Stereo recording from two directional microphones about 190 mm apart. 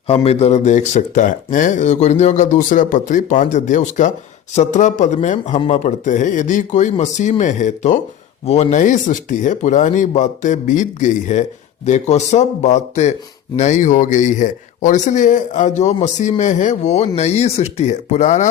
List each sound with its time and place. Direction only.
0.1 s speech: 30° left (ahead or behind)